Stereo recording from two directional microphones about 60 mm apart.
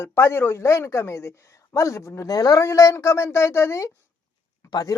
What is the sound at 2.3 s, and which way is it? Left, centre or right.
Speech, left.